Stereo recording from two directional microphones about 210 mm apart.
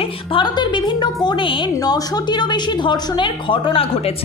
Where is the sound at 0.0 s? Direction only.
25° left (ahead or behind).